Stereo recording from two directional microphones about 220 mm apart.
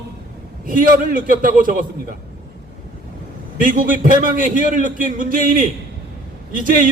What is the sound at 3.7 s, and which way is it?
A man's voice, 40° right (ahead or behind).